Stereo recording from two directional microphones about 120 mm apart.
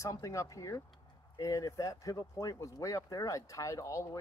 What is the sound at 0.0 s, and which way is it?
Speech, 30° left (ahead or behind).